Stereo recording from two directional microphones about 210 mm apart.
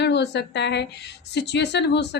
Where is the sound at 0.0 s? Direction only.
55° left (ahead or behind).